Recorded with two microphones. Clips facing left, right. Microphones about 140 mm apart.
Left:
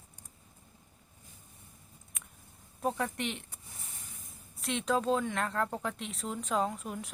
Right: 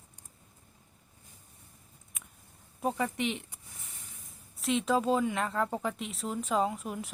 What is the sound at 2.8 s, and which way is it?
Speech, centre (ahead or behind).